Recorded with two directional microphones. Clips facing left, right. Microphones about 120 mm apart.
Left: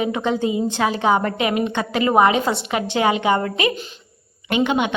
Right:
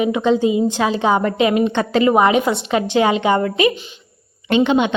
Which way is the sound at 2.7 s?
20° left (ahead or behind).